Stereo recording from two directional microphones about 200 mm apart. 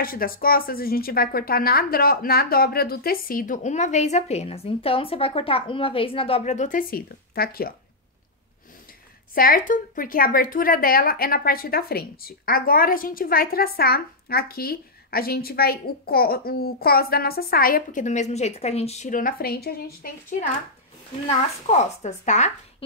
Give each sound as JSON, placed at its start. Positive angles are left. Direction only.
{"t": 0.0, "sound": "a woman's voice", "side_deg": 45}
{"t": 9.3, "sound": "a woman's voice", "side_deg": 45}
{"t": 21.3, "sound": "a child's voice", "side_deg": 35}